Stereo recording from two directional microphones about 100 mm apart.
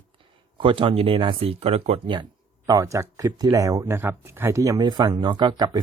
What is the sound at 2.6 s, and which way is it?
Speech, 35° right (ahead or behind).